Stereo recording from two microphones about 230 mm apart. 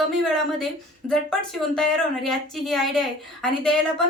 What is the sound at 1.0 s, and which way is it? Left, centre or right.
Speech, centre.